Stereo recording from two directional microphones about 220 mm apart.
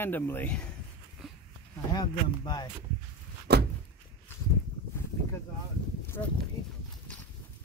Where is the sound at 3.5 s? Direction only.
50° right (ahead or behind).